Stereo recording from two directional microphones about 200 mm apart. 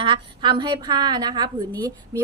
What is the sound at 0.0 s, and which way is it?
A woman's voice, 25° right (ahead or behind).